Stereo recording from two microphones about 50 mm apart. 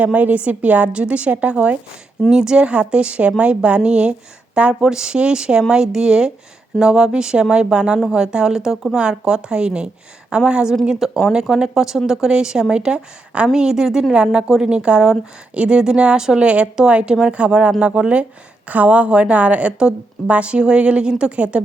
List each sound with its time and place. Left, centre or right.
0.0 s a woman's voice: right
2.3 s a woman's voice: centre
9.0 s a woman's voice: centre